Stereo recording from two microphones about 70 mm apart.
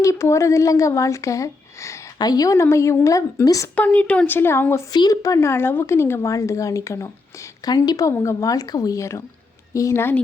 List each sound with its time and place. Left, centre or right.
0.0 s speech: left
2.1 s a woman's voice: left
3.8 s a woman's voice: left
4.3 s a woman's voice: left
4.9 s speech: left
5.2 s a woman's voice: left